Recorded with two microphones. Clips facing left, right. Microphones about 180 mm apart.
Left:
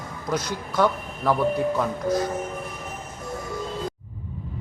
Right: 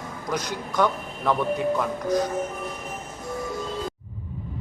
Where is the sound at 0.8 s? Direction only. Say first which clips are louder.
Left 1 dB; 5° left (ahead or behind).